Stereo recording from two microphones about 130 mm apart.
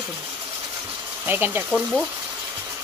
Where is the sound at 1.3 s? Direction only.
15° right (ahead or behind).